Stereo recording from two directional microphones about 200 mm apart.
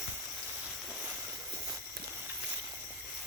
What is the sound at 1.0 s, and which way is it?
Vehicle, 15° right (ahead or behind).